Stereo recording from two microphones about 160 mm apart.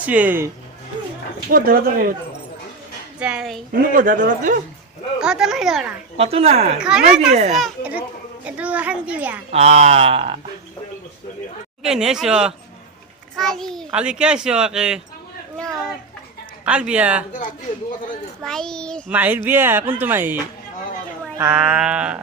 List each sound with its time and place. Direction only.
0.0 s a child's voice: 10° right (ahead or behind)
1.5 s speech: 65° right (ahead or behind)
3.2 s a child's voice: 5° right (ahead or behind)
3.7 s speech: 55° right (ahead or behind)
5.2 s a child's voice: 5° right (ahead or behind)
6.1 s speech: 40° right (ahead or behind)
6.7 s a child's voice: 5° right (ahead or behind)
9.5 s speech: 40° right (ahead or behind)
11.8 s a child's voice: 5° right (ahead or behind)
15.5 s chatter: 5° left (ahead or behind)
16.6 s a child's voice: 5° right (ahead or behind)
18.4 s a child's voice: 5° left (ahead or behind)
19.0 s a child's voice: 10° right (ahead or behind)